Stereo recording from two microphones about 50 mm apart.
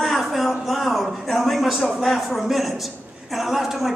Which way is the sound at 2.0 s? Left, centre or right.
Centre.